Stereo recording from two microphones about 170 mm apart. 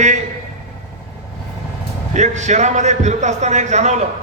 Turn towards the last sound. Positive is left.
turn(degrees=-45)  # may be behind; listen again after turning